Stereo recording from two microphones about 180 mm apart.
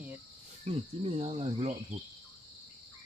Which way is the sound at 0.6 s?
35° right (ahead or behind).